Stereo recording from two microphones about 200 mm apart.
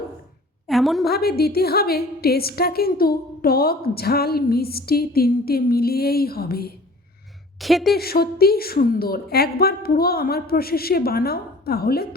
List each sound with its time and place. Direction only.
0.7 s a woman's voice: centre (ahead or behind)
1.0 s a woman's voice: 50° left (ahead or behind)
7.6 s a woman's voice: centre (ahead or behind)
7.9 s a woman's voice: 50° left (ahead or behind)